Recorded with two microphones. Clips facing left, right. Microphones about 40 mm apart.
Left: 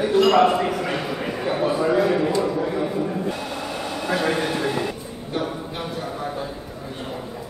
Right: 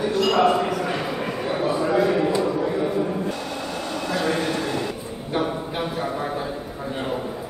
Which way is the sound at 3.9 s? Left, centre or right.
Centre.